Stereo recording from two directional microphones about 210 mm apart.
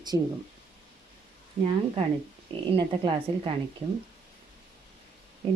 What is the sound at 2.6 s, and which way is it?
Speech, 20° right (ahead or behind).